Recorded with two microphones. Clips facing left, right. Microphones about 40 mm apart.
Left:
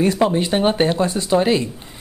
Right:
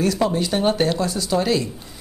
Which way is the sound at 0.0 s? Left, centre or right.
Left.